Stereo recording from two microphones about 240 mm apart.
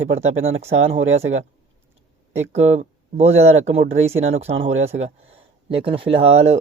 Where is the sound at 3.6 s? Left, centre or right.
Right.